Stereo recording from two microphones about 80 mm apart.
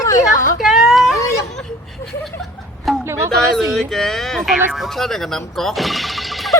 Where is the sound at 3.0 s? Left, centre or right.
Right.